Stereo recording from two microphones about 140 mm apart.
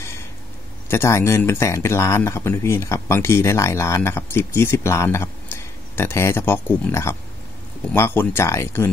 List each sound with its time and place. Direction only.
0.8 s speech: 20° left (ahead or behind)